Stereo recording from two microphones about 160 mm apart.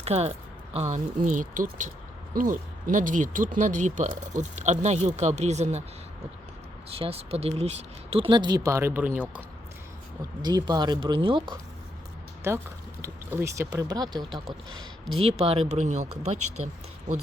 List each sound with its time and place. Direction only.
0.0 s speech: 40° right (ahead or behind)
7.0 s speech: 40° right (ahead or behind); by 9.2 s 10° right (ahead or behind)
10.4 s speech: 25° right (ahead or behind)
12.4 s speech: 15° right (ahead or behind)
15.1 s speech: 40° right (ahead or behind)